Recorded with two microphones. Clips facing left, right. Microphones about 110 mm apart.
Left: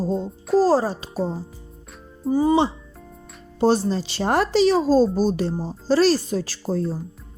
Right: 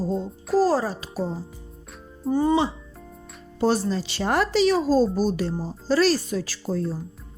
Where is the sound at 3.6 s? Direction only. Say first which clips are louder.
Left 3 dB; 25° left (ahead or behind).